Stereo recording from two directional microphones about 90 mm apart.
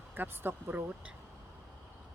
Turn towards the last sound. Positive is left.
turn(degrees=-20)  # may be behind; listen again after turning